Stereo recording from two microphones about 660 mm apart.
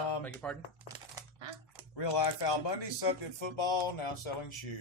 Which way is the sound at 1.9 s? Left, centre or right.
Left.